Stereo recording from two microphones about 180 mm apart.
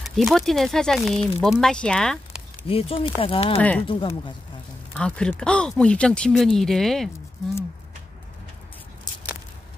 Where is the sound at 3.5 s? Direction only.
10° left (ahead or behind).